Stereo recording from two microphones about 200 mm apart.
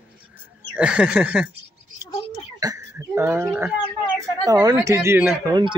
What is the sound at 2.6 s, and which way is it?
Speech, 15° right (ahead or behind).